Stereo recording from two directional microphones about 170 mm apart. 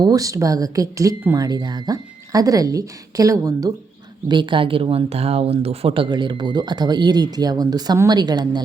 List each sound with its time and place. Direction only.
0.0 s speech: 20° right (ahead or behind)